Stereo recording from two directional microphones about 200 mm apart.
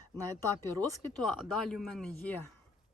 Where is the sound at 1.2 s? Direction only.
Centre (ahead or behind).